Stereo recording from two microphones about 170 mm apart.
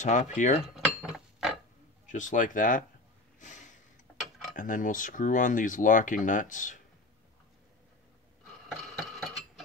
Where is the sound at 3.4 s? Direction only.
45° left (ahead or behind).